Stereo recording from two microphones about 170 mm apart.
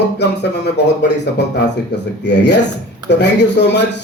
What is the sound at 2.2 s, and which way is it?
Speech, 90° left.